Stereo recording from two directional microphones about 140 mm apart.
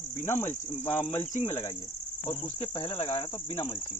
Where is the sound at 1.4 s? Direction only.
55° left (ahead or behind).